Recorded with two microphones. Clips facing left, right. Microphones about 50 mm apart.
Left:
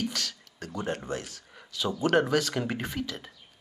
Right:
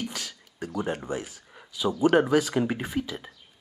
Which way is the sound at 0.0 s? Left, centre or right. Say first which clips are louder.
Left 2 dB; centre.